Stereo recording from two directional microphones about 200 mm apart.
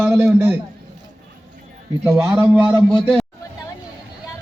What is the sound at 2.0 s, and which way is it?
Speech, 15° right (ahead or behind).